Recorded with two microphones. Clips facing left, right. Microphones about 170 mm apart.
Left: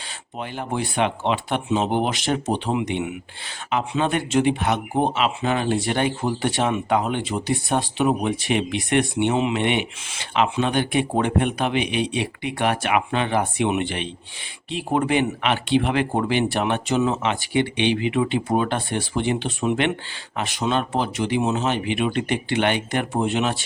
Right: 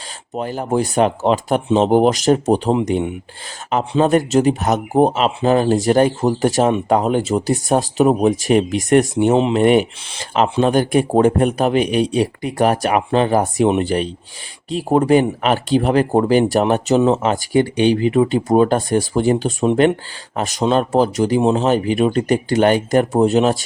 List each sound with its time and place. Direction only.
0.3 s speech: 40° right (ahead or behind)